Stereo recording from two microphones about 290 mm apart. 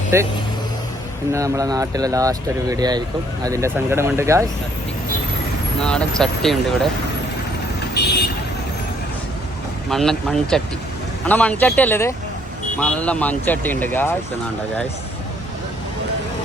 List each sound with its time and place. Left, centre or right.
0.1 s speech: centre
1.3 s speech: centre
5.8 s speech: centre
8.0 s vehicle: left
9.9 s speech: centre